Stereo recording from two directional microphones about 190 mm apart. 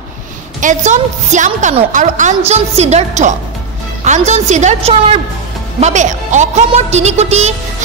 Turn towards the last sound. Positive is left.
turn(degrees=-35)  # may be behind; listen again after turning